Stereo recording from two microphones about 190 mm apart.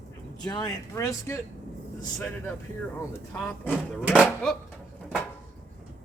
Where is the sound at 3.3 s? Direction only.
5° left (ahead or behind).